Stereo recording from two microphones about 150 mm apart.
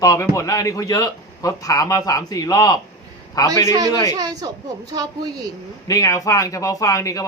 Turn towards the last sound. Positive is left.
turn(degrees=20)  # may be behind; listen again after turning